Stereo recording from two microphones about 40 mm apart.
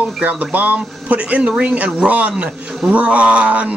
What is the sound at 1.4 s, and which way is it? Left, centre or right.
A man's voice, right.